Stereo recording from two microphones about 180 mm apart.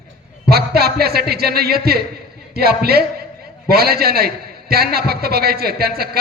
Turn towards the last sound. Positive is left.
turn(degrees=-60)  # may be behind; listen again after turning